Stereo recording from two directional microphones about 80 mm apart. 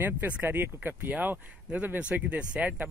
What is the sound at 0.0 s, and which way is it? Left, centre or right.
Speech, right.